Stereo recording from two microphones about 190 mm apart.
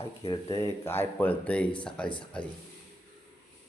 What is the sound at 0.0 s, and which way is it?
Speech, 30° left (ahead or behind).